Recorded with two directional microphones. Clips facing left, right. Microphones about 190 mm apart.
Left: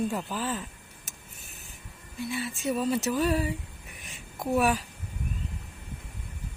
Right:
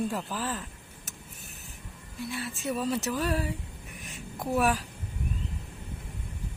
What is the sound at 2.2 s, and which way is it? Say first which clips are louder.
Speech: left 3 dB; centre (ahead or behind).